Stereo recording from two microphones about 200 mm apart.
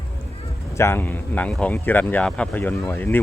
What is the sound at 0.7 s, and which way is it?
Speech, 10° left (ahead or behind).